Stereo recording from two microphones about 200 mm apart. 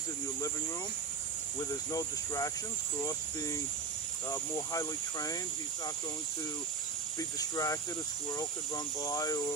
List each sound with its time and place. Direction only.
1.7 s speech: 15° left (ahead or behind)
4.3 s speech: 15° left (ahead or behind)
7.3 s speech: 15° left (ahead or behind)